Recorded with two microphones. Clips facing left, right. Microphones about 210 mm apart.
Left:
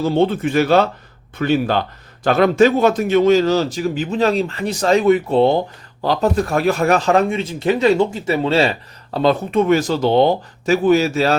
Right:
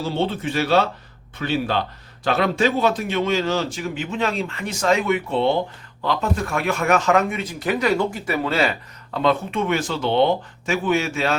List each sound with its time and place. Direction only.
0.0 s a man's voice: 50° left (ahead or behind)